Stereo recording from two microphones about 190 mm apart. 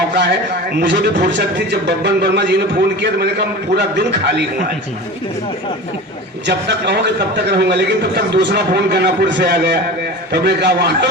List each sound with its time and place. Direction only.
0.8 s a man's voice: 60° right (ahead or behind)
6.5 s a man's voice: 65° right (ahead or behind)